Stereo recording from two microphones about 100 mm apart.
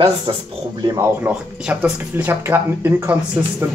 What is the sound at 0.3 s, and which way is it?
Speech, 65° right (ahead or behind).